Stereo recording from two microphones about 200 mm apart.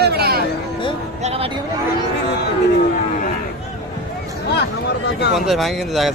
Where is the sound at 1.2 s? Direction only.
30° right (ahead or behind).